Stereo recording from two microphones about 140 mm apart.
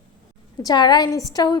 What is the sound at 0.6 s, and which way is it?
Speech, 30° left (ahead or behind).